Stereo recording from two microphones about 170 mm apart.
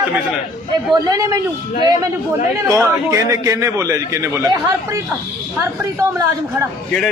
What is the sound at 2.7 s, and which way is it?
A man's voice, 15° right (ahead or behind).